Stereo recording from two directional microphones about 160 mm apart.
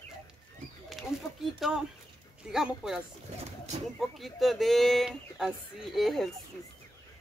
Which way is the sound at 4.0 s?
Centre (ahead or behind).